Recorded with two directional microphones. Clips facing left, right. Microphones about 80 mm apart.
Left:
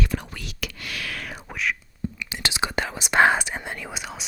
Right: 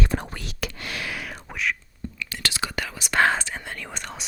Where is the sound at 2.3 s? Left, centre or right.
Centre.